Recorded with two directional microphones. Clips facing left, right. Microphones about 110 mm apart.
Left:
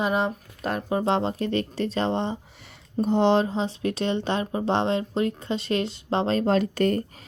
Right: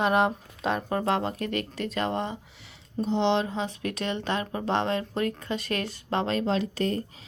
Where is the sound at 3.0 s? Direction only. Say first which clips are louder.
Left 4 dB; 50° left (ahead or behind).